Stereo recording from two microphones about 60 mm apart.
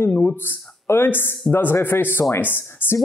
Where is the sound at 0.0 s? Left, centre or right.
Left.